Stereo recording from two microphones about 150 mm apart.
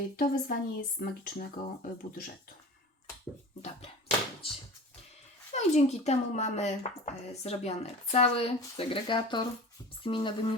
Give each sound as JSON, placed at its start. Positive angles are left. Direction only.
{"t": 0.2, "sound": "speech", "side_deg": 70}
{"t": 5.5, "sound": "speech", "side_deg": 50}